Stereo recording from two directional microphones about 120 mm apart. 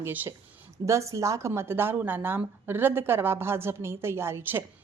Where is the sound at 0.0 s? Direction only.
15° right (ahead or behind).